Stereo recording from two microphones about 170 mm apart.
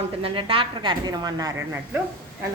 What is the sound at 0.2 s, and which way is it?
A woman's voice, 35° right (ahead or behind).